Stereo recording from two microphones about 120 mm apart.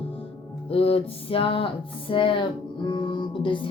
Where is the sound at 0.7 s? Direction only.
50° left (ahead or behind).